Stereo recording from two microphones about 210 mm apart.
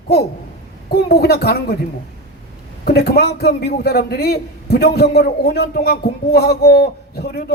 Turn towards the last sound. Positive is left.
turn(degrees=50)  # may be behind; listen again after turning